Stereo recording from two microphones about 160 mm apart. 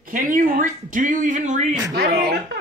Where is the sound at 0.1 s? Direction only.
55° right (ahead or behind).